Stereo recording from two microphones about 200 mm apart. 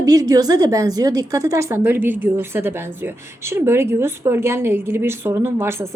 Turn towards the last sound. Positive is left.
turn(degrees=-15)  # may be behind; listen again after turning